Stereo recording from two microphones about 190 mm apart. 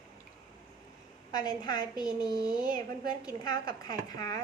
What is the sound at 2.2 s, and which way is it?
Speech, 55° right (ahead or behind).